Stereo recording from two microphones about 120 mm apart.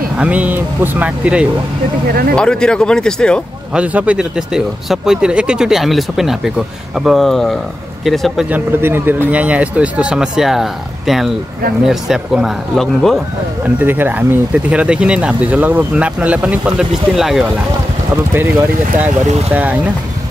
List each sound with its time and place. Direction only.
0.2 s speech: 10° right (ahead or behind)
2.3 s speech: 5° left (ahead or behind)
3.7 s speech: 10° right (ahead or behind)
8.5 s speech: 15° right (ahead or behind); by 13.2 s centre (ahead or behind)
13.7 s speech: 15° right (ahead or behind)
18.3 s speech: 20° right (ahead or behind)